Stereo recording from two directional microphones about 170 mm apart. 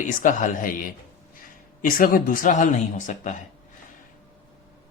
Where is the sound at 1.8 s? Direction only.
55° left (ahead or behind).